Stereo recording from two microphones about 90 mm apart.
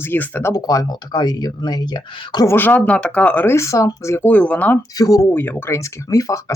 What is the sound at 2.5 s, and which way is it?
Speech, 20° left (ahead or behind).